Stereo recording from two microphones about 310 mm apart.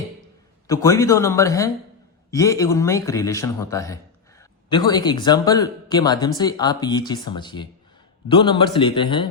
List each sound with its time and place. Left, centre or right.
0.7 s speech: centre